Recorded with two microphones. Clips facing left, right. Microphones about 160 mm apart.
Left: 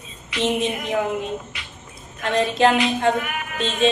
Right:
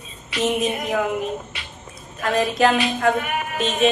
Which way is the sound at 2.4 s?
25° left (ahead or behind).